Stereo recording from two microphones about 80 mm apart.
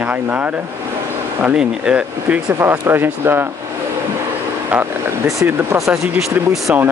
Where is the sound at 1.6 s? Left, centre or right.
Centre.